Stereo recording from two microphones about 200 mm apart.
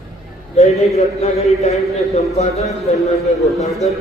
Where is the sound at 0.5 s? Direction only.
35° left (ahead or behind).